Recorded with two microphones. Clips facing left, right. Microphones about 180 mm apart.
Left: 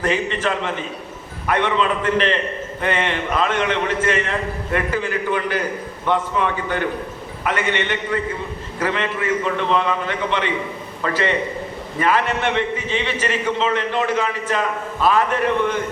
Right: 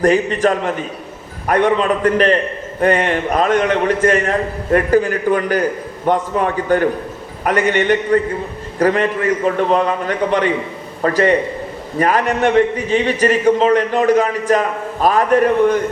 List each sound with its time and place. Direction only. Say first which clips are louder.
0.0 s a man's voice: right 7 dB; 45° right (ahead or behind)